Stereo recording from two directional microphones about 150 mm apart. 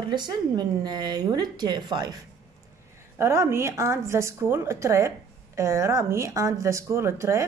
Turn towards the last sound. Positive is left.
turn(degrees=-20)  # may be behind; listen again after turning